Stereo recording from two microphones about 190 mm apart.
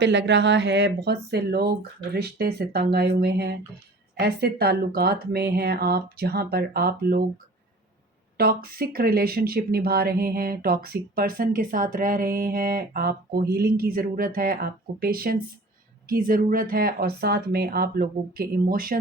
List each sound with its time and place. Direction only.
0.0 s speech: 65° right (ahead or behind)
8.4 s speech: 50° right (ahead or behind)